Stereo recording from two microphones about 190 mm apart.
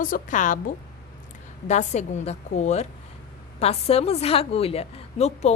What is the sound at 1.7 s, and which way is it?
A woman's voice, 40° left (ahead or behind).